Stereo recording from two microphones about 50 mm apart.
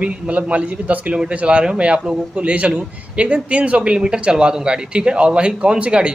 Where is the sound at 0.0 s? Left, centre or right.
Right.